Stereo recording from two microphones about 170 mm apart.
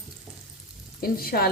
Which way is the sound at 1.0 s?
60° left (ahead or behind).